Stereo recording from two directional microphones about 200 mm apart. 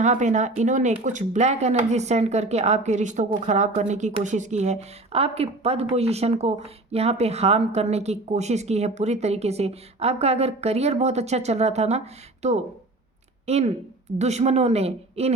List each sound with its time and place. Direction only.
0.0 s speech: 35° right (ahead or behind)